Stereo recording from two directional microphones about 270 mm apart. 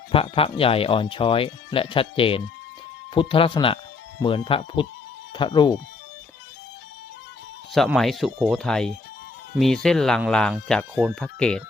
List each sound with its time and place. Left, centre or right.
0.1 s speech: left
7.7 s speech: centre